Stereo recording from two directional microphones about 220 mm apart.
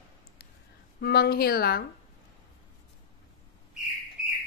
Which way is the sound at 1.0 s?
45° left (ahead or behind).